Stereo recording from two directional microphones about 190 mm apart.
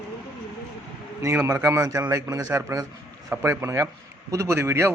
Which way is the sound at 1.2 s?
15° right (ahead or behind).